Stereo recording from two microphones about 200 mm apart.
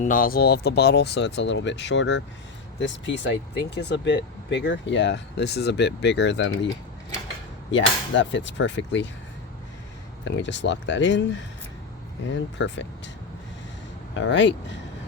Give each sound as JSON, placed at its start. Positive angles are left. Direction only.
{"t": 0.0, "sound": "speech", "side_deg": 45}
{"t": 7.7, "sound": "speech", "side_deg": 65}
{"t": 10.2, "sound": "speech", "side_deg": 65}
{"t": 14.1, "sound": "speech", "side_deg": 65}